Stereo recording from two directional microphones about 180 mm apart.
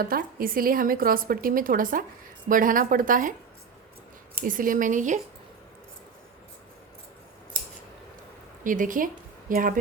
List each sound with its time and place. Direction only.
0.0 s a woman's voice: 55° right (ahead or behind)
4.4 s a woman's voice: 50° right (ahead or behind)
8.6 s a woman's voice: 45° right (ahead or behind)